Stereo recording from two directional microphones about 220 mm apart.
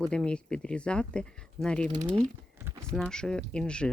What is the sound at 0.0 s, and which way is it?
Speech, 5° left (ahead or behind).